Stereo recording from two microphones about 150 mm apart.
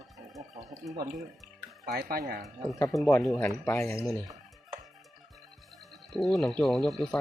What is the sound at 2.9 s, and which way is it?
Speech, 20° left (ahead or behind).